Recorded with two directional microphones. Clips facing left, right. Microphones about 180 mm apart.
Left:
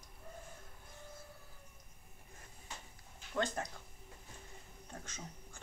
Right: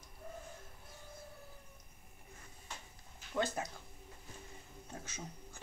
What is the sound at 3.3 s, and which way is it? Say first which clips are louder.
Speech: right 1 dB; 5° right (ahead or behind).